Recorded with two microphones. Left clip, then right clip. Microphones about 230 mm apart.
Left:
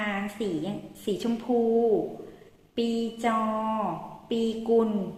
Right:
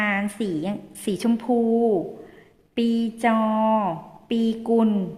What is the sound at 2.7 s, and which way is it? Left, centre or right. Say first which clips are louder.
Speech: right 4 dB; right.